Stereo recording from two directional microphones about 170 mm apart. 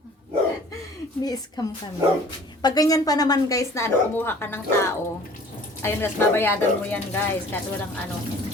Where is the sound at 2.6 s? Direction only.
20° left (ahead or behind).